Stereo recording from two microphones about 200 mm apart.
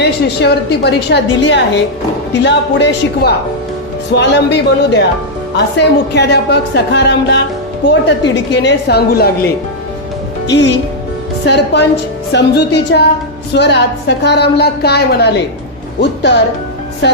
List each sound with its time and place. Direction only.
0.0 s a woman's voice: 55° left (ahead or behind)
8.6 s a woman's voice: 55° left (ahead or behind)
10.4 s a woman's voice: 60° left (ahead or behind)